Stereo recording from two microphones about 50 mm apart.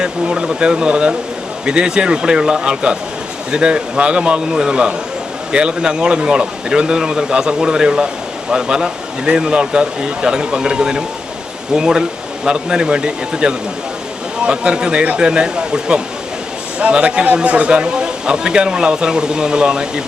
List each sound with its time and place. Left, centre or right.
0.0 s speech: centre